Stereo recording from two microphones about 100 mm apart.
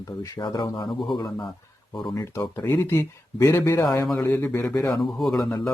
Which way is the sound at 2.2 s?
30° left (ahead or behind).